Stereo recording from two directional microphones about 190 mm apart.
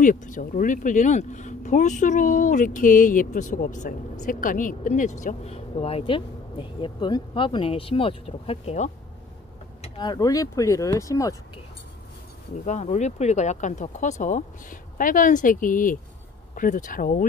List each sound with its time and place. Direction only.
0.0 s speech: 45° left (ahead or behind)
9.8 s speech: 25° left (ahead or behind)
12.6 s speech: 40° left (ahead or behind)